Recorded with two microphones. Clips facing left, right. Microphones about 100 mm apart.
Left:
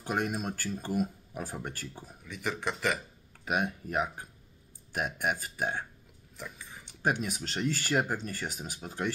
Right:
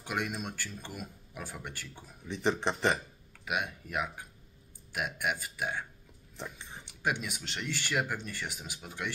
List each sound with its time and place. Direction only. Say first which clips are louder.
0.0 s speech: left 4 dB; 40° left (ahead or behind)
2.2 s speech: right 4 dB; 30° right (ahead or behind)
3.4 s speech: left 4 dB; 40° left (ahead or behind)
6.3 s dog: right 1 dB; 30° right (ahead or behind)
7.0 s speech: left 3 dB; 40° left (ahead or behind)